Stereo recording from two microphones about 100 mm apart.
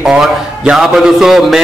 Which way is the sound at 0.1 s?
5° right (ahead or behind).